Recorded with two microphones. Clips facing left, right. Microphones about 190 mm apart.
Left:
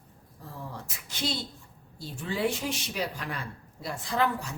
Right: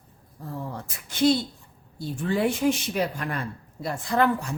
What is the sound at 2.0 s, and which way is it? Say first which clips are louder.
Speech: right 5 dB; 55° right (ahead or behind).